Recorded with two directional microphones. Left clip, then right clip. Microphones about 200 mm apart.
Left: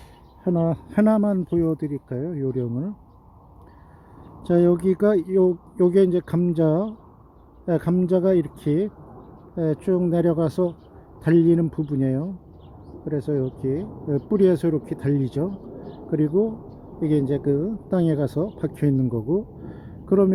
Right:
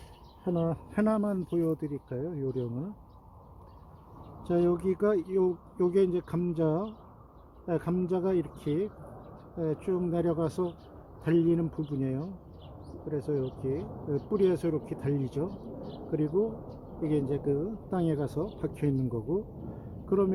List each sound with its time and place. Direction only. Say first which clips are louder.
0.4 s speech: left 8 dB; 40° left (ahead or behind)
4.4 s speech: left 8 dB; 35° left (ahead or behind)